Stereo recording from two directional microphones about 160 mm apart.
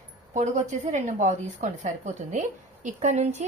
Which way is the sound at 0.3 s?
50° right (ahead or behind).